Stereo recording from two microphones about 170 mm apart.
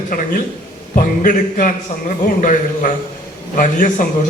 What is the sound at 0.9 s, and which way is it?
A man's voice, 50° left (ahead or behind).